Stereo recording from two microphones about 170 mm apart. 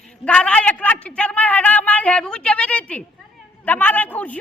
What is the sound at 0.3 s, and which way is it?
A man's voice, 5° left (ahead or behind).